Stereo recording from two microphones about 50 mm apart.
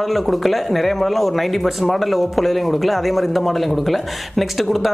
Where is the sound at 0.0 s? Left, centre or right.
Centre.